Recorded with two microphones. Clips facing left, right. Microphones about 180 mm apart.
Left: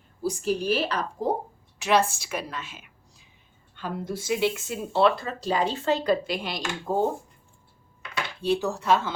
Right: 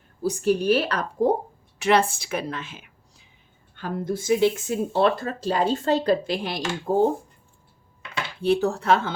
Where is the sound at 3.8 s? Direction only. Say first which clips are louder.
Right 4 dB; 50° right (ahead or behind).